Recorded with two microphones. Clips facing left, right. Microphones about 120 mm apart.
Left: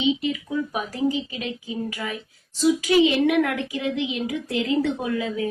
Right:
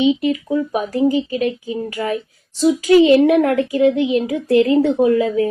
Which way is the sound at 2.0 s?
50° right (ahead or behind).